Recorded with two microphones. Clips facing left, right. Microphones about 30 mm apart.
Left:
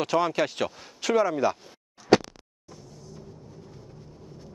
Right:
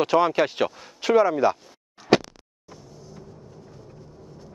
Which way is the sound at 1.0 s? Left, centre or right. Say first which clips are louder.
Right 5 dB; centre.